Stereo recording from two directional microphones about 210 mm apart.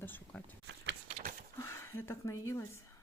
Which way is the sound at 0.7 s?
55° right (ahead or behind).